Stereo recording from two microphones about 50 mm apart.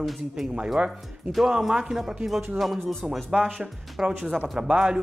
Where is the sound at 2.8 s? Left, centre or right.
Centre.